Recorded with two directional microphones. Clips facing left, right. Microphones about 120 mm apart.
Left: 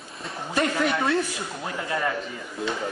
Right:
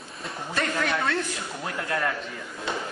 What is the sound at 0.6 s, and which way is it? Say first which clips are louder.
A man's voice: left 3 dB; 15° left (ahead or behind).